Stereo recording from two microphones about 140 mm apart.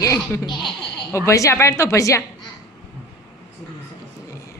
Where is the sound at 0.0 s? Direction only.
20° left (ahead or behind).